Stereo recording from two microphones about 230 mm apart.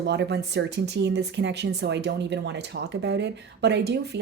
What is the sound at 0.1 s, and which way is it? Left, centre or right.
Speech, right.